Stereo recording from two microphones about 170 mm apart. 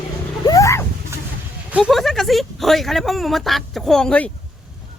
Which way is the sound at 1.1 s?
15° right (ahead or behind).